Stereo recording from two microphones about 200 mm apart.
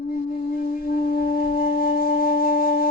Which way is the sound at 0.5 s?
45° left (ahead or behind).